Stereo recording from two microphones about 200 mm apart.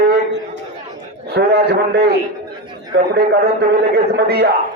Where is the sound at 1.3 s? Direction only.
55° right (ahead or behind).